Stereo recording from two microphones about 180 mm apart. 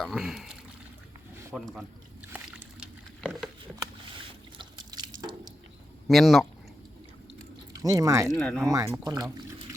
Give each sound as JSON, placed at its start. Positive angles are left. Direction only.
{"t": 0.0, "sound": "pour", "side_deg": 0}
{"t": 1.5, "sound": "speech", "side_deg": 0}
{"t": 2.3, "sound": "a sound", "side_deg": -5}
{"t": 3.6, "sound": "a sound", "side_deg": -25}
{"t": 6.1, "sound": "speech", "side_deg": 0}
{"t": 7.8, "sound": "speech", "side_deg": -20}
{"t": 8.4, "sound": "speech", "side_deg": 5}
{"t": 8.6, "sound": "speech", "side_deg": -20}